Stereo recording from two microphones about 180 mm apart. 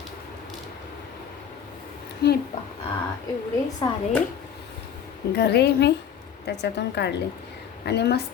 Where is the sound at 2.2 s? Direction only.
65° left (ahead or behind).